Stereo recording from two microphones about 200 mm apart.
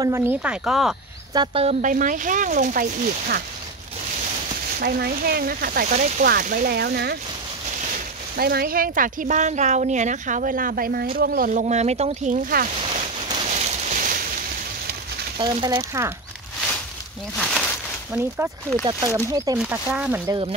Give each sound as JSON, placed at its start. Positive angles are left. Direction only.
{"t": 0.0, "sound": "speech", "side_deg": -10}
{"t": 1.3, "sound": "speech", "side_deg": -25}
{"t": 4.7, "sound": "speech", "side_deg": -50}
{"t": 8.4, "sound": "speech", "side_deg": -50}
{"t": 12.8, "sound": "a sound", "side_deg": -25}
{"t": 15.3, "sound": "speech", "side_deg": -25}
{"t": 17.4, "sound": "a sound", "side_deg": 0}
{"t": 18.9, "sound": "speech", "side_deg": -15}
{"t": 19.6, "sound": "speech", "side_deg": -5}